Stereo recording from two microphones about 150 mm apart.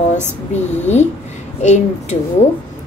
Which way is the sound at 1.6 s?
50° left (ahead or behind).